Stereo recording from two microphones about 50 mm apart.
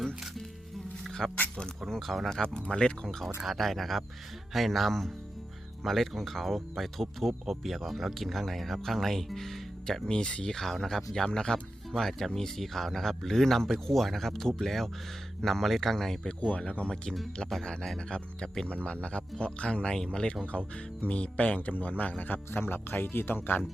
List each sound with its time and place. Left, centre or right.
1.2 s speech: centre
3.4 s speech: centre
10.1 s speech: centre
10.6 s speech: centre
16.4 s speech: left